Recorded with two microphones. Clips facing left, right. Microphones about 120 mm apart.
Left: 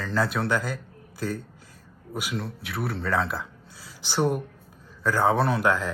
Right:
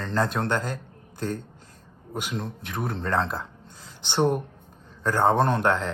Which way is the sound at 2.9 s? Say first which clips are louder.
Right 1 dB; 5° left (ahead or behind).